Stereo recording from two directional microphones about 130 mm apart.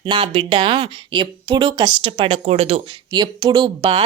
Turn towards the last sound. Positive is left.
turn(degrees=-35)  # may be behind; listen again after turning